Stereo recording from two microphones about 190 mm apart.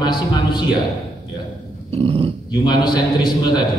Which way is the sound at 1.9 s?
30° right (ahead or behind).